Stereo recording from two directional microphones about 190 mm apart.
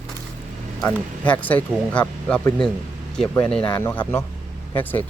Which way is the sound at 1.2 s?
10° left (ahead or behind).